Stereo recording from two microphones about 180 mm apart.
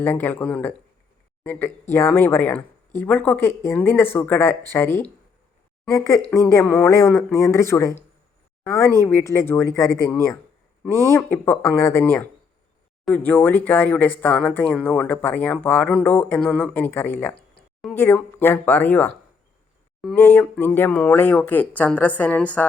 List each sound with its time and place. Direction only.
0.0 s speech: 10° left (ahead or behind)
20.1 s speech: 10° left (ahead or behind)